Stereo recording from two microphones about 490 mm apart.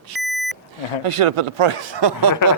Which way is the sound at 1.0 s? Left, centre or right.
Right.